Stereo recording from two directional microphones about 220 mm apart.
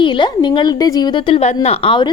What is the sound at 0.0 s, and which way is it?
A woman's voice, 20° left (ahead or behind).